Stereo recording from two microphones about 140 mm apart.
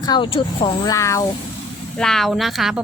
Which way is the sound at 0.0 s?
35° left (ahead or behind).